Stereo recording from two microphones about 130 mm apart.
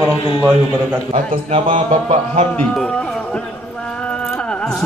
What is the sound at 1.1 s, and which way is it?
A man's voice, 55° right (ahead or behind).